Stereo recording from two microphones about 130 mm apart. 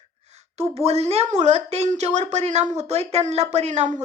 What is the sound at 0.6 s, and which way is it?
A woman's voice, 55° right (ahead or behind).